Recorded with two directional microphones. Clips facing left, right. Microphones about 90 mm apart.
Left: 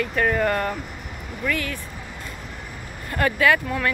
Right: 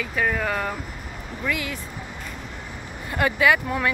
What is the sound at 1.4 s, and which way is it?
Speech, 15° right (ahead or behind).